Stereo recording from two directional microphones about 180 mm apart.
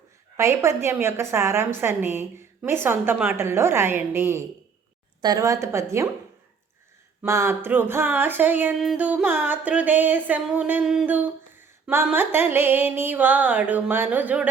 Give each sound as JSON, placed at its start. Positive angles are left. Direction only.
{"t": 0.3, "sound": "music", "side_deg": -15}
{"t": 7.2, "sound": "music", "side_deg": -15}